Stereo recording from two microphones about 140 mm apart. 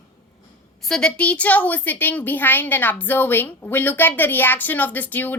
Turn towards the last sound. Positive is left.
turn(degrees=15)  # may be behind; listen again after turning